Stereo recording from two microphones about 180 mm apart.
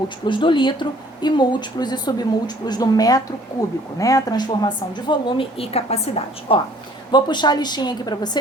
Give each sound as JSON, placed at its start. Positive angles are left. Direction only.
{"t": 0.3, "sound": "speech", "side_deg": 25}